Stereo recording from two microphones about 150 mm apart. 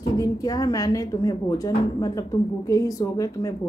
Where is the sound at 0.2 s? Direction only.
25° left (ahead or behind).